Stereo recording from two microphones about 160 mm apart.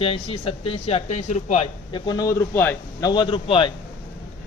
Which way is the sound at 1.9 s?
25° left (ahead or behind).